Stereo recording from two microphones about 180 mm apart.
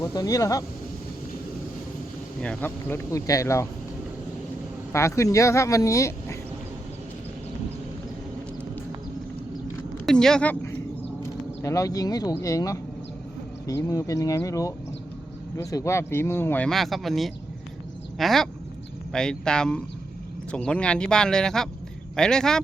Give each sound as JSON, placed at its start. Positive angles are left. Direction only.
{"t": 0.0, "sound": "speech", "side_deg": 20}
{"t": 2.4, "sound": "speech", "side_deg": 10}
{"t": 4.9, "sound": "speech", "side_deg": 15}
{"t": 10.1, "sound": "speech", "side_deg": 5}
{"t": 11.2, "sound": "a sound", "side_deg": 15}
{"t": 12.4, "sound": "speech", "side_deg": 20}